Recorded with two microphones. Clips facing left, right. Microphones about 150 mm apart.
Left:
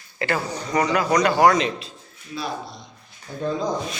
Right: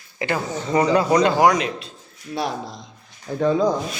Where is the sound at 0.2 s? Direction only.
20° right (ahead or behind).